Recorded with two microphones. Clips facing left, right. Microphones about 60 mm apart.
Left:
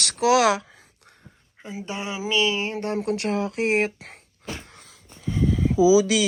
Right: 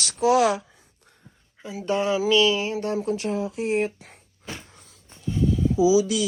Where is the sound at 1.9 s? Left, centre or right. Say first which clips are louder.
Right 7 dB; left.